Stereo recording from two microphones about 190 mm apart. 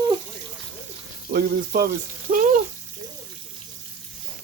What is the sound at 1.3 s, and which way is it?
Speech, 55° right (ahead or behind).